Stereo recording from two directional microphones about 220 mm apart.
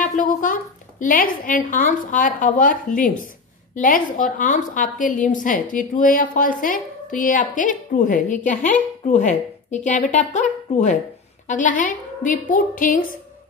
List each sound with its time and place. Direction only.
0.0 s a woman's voice: 35° left (ahead or behind)